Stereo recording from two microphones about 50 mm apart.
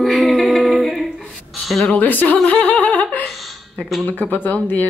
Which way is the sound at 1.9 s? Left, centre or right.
Left.